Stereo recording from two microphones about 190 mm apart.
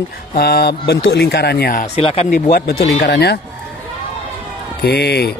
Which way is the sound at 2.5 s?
55° left (ahead or behind).